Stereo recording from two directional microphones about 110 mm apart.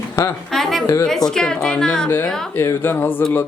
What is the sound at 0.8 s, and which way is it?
Speech, 30° left (ahead or behind).